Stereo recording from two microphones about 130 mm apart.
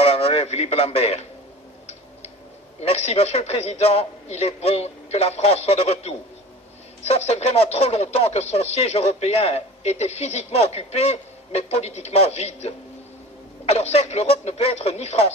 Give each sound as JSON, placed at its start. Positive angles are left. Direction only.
{"t": 0.0, "sound": "a man's voice", "side_deg": 50}
{"t": 2.8, "sound": "speech", "side_deg": 55}